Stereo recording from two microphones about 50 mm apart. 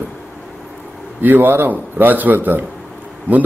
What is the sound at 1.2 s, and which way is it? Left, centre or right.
A man's voice, right.